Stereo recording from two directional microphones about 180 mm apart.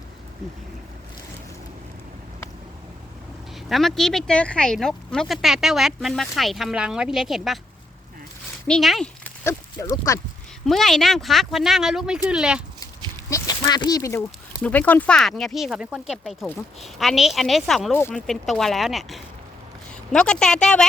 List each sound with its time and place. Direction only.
3.7 s speech: centre (ahead or behind)
8.6 s speech: centre (ahead or behind)
9.4 s speech: 15° left (ahead or behind)
10.7 s speech: centre (ahead or behind)
13.3 s speech: 20° left (ahead or behind); by 20.8 s 5° left (ahead or behind)